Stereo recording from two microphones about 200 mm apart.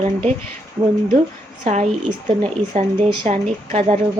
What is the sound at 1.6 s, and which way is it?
Speech, 35° right (ahead or behind).